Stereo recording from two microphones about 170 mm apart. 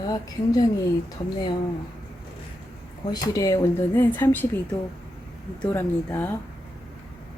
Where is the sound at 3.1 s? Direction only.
25° left (ahead or behind).